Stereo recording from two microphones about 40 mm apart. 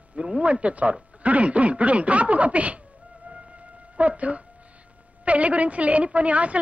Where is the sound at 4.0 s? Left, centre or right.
Right.